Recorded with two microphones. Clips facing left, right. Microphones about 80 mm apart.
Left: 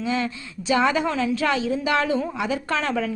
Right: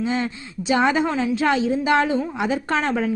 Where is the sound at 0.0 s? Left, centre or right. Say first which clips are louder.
Right 2 dB; right.